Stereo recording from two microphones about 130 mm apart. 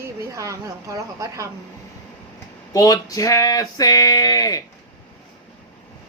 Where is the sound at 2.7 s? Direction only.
30° left (ahead or behind).